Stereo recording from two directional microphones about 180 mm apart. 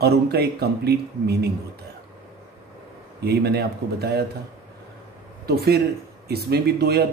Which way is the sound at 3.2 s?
60° right (ahead or behind).